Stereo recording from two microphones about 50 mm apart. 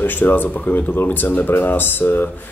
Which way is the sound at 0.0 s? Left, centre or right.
Left.